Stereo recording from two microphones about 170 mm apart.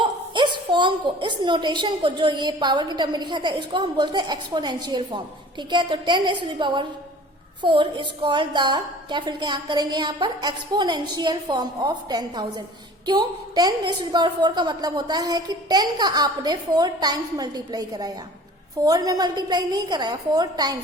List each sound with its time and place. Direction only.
0.0 s a woman's voice: 25° right (ahead or behind)